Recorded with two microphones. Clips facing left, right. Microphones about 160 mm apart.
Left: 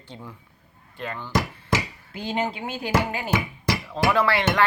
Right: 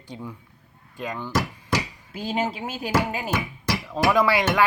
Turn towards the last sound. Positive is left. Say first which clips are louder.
# right 1 dB
turn(degrees=-10)  # may be behind; listen again after turning